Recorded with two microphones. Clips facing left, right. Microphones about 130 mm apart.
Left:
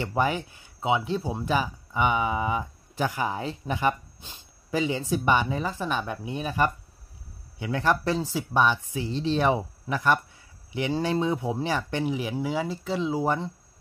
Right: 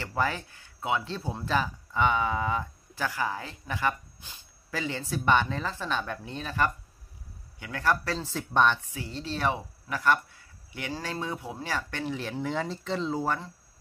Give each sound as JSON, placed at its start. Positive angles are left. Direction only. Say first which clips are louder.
{"t": 0.0, "sound": "speech", "louder": "left 4 dB", "side_deg": 20}
{"t": 8.9, "sound": "speech", "louder": "left 9 dB", "side_deg": 20}